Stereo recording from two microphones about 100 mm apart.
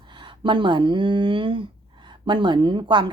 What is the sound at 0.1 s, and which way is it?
Speech, 55° right (ahead or behind).